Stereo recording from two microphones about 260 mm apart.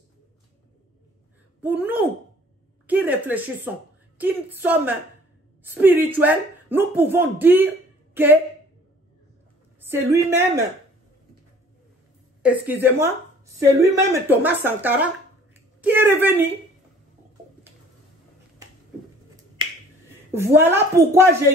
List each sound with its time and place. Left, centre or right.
1.6 s speech: centre
9.8 s a woman's voice: centre
12.4 s speech: centre
20.3 s speech: centre